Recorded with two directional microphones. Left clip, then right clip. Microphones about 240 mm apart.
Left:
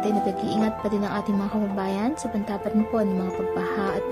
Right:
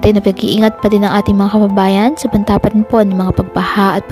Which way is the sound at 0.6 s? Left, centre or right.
Right.